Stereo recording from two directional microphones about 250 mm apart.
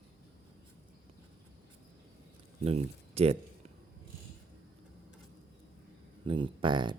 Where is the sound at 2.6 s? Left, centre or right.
Right.